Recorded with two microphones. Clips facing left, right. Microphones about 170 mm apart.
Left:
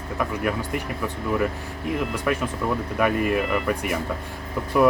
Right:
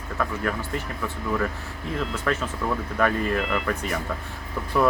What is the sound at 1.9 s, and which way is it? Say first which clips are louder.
Speech: left 1 dB; 15° left (ahead or behind).